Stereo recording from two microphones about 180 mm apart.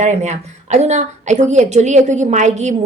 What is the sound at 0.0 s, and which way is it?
A woman's voice, 40° right (ahead or behind).